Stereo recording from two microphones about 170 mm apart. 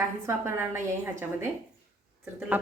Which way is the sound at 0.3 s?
15° right (ahead or behind).